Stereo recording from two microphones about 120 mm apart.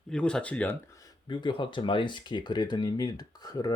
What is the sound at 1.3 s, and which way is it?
Speech, 40° left (ahead or behind).